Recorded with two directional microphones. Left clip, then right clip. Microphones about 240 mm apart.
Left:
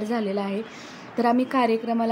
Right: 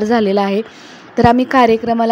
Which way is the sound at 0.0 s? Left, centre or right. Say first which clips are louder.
Right 13 dB; right.